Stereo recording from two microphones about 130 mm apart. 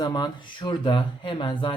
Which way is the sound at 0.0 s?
35° left (ahead or behind).